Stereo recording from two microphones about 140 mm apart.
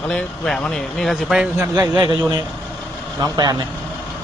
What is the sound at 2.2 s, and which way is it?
Speech, 15° right (ahead or behind).